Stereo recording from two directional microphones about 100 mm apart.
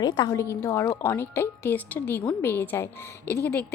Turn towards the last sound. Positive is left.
turn(degrees=20)  # may be behind; listen again after turning